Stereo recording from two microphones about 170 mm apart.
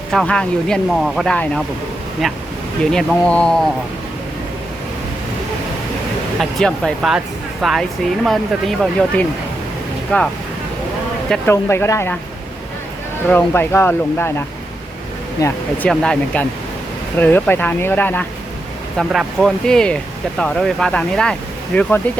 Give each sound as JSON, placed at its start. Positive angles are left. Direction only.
{"t": 0.1, "sound": "speech", "side_deg": 5}
{"t": 6.4, "sound": "speech", "side_deg": 5}
{"t": 11.4, "sound": "speech", "side_deg": 15}
{"t": 13.3, "sound": "speech", "side_deg": 15}